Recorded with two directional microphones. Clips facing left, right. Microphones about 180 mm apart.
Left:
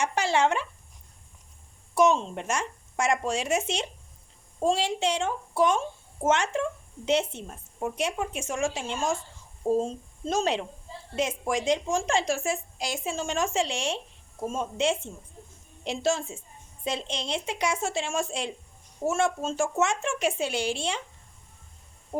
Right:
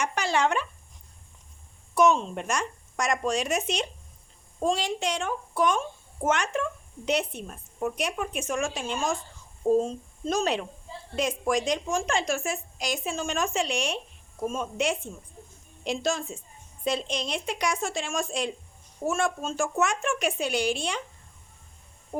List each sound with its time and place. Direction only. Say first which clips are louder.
0.0 s speech: left 1 dB; 25° left (ahead or behind)
2.0 s speech: even; 25° left (ahead or behind)